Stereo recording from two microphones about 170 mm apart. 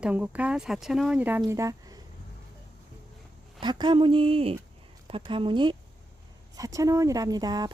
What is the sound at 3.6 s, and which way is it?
Speech, 25° right (ahead or behind).